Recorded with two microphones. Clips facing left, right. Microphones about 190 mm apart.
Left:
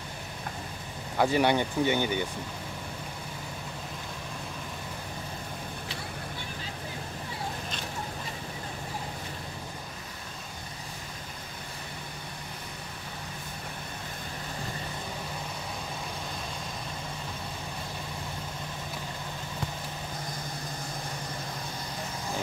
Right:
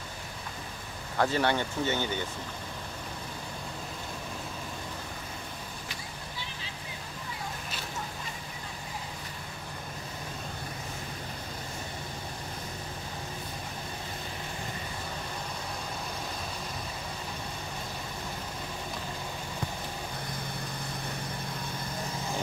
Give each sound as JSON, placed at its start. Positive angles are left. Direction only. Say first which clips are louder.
{"t": 1.1, "sound": "speech", "louder": "left 3 dB", "side_deg": 15}